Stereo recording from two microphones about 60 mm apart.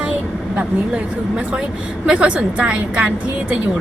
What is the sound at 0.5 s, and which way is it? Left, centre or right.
A woman's voice, right.